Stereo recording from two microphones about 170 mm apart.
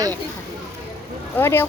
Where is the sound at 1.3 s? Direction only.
15° left (ahead or behind).